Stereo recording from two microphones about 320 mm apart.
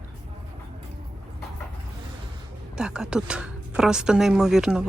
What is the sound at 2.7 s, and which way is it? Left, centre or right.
A woman's voice, centre.